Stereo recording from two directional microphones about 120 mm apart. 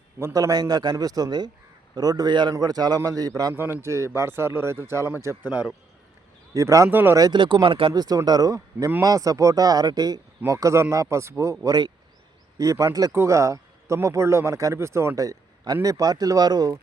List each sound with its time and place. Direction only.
0.3 s a man's voice: 30° right (ahead or behind); by 5.7 s 10° right (ahead or behind)
6.5 s a man's voice: 25° right (ahead or behind)
7.2 s speech: 40° right (ahead or behind)
8.0 s a man's voice: 35° right (ahead or behind)